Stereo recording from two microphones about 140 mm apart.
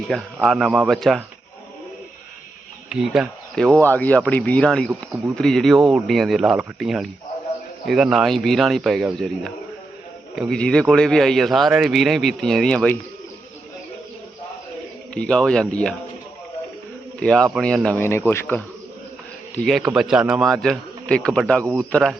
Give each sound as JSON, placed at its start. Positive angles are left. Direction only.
{"t": 0.1, "sound": "a man's voice", "side_deg": 5}
{"t": 2.9, "sound": "a man's voice", "side_deg": -5}
{"t": 15.1, "sound": "speech", "side_deg": 5}
{"t": 17.2, "sound": "a man's voice", "side_deg": 5}
{"t": 18.0, "sound": "speech", "side_deg": 15}
{"t": 19.5, "sound": "a man's voice", "side_deg": 0}